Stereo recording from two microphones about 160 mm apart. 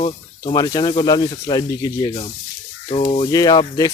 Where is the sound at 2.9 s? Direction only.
35° left (ahead or behind).